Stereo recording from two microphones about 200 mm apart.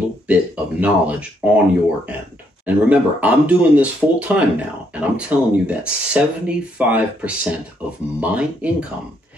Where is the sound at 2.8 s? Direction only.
5° right (ahead or behind).